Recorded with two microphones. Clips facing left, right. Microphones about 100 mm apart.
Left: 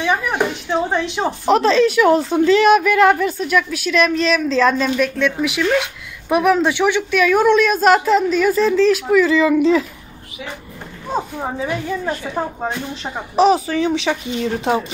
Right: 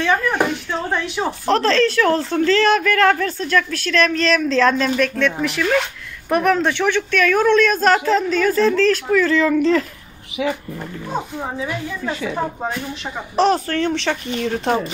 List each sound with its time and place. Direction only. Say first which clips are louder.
0.0 s speech: even; 15° left (ahead or behind)
13.4 s speech: left 3 dB; 5° left (ahead or behind)